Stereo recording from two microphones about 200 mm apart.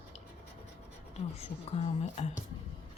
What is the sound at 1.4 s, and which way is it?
Speech, 30° left (ahead or behind).